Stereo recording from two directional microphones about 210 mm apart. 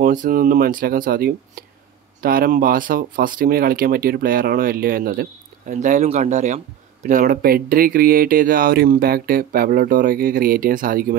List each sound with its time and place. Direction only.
0.0 s speech: 40° right (ahead or behind)